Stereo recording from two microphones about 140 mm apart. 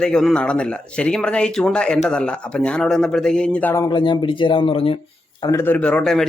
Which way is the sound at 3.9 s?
30° left (ahead or behind).